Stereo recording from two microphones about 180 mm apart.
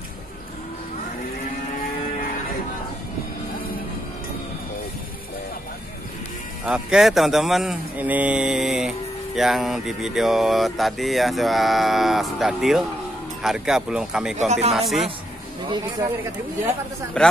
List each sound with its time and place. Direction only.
6.6 s speech: 5° right (ahead or behind)
15.7 s speech: 25° right (ahead or behind)